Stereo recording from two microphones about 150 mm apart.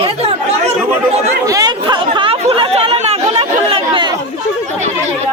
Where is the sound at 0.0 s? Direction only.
45° right (ahead or behind).